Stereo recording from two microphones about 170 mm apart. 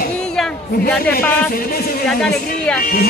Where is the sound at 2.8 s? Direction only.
60° left (ahead or behind).